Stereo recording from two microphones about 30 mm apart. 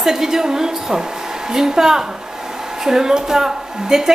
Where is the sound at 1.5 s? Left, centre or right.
Centre.